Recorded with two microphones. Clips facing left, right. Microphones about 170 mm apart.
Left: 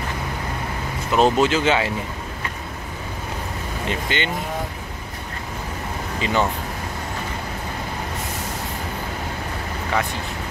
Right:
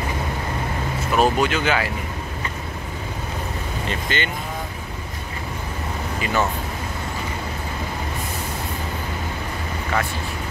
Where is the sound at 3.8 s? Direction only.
20° left (ahead or behind).